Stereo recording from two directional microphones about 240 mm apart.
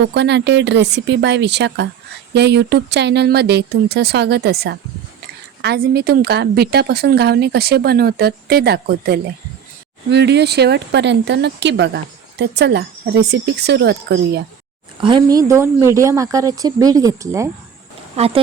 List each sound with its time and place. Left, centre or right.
0.1 s a woman's voice: right
15.0 s speech: centre
18.2 s speech: right